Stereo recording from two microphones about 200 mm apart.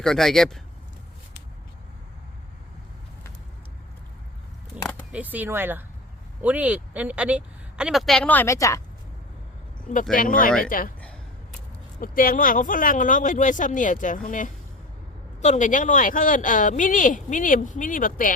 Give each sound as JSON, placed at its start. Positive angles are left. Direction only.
{"t": 0.0, "sound": "a woman's voice", "side_deg": 0}
{"t": 5.1, "sound": "a woman's voice", "side_deg": -10}
{"t": 10.2, "sound": "speech", "side_deg": 45}
{"t": 11.9, "sound": "speech", "side_deg": 45}